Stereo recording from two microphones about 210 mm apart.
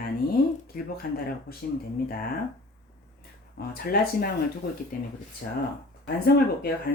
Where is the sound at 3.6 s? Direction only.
50° left (ahead or behind).